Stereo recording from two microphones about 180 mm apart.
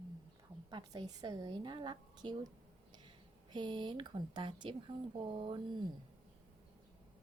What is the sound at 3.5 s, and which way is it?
A woman's voice, 25° right (ahead or behind).